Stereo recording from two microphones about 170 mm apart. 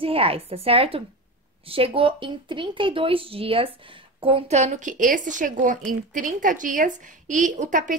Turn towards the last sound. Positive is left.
turn(degrees=-50)  # may be behind; listen again after turning